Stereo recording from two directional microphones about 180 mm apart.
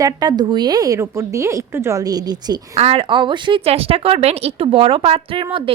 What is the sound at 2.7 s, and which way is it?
A woman's voice, 35° right (ahead or behind).